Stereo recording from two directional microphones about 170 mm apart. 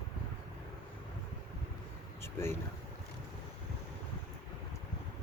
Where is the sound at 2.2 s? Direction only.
15° left (ahead or behind).